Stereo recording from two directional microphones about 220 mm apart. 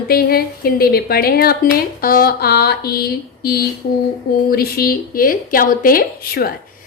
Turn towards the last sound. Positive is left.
turn(degrees=45)  # may be behind; listen again after turning